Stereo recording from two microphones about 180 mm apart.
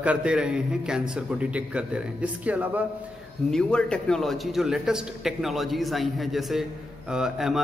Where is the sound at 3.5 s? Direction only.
5° left (ahead or behind).